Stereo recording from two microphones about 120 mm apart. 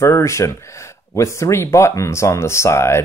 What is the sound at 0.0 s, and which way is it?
Speech, 25° left (ahead or behind).